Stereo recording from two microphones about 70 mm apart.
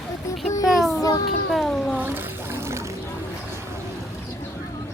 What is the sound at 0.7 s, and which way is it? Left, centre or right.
Child singing, centre.